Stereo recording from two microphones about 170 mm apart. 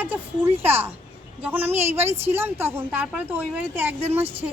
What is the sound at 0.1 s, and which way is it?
A woman's voice, 10° right (ahead or behind).